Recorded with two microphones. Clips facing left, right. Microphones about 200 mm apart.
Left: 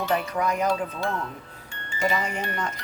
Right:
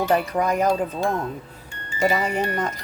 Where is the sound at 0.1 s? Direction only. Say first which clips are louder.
Right 4 dB; 45° right (ahead or behind).